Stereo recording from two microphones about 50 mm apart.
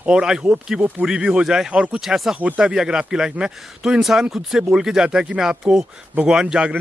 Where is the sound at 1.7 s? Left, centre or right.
Right.